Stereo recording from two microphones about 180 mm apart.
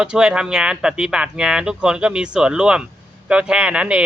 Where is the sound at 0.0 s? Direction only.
5° right (ahead or behind).